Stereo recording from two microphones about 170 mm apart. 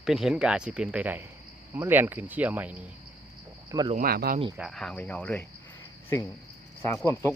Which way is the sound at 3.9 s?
60° right (ahead or behind).